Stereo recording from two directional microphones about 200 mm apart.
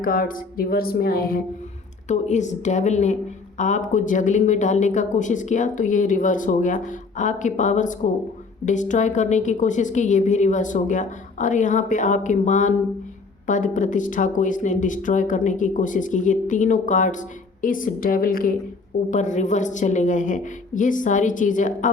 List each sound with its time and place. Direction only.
0.0 s speech: 45° left (ahead or behind)
2.0 s speech: 35° left (ahead or behind)